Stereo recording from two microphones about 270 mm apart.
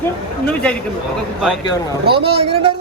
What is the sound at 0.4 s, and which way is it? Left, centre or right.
Speech, centre.